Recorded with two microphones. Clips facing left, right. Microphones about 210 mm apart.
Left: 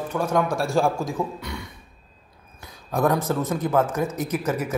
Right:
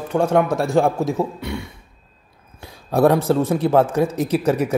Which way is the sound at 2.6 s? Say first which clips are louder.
Right 7 dB; 30° right (ahead or behind).